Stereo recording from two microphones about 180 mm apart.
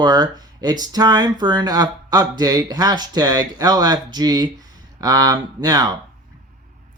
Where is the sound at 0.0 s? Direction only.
20° right (ahead or behind).